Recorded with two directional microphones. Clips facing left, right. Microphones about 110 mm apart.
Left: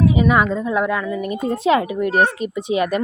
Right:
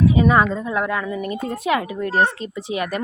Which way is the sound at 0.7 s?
10° left (ahead or behind).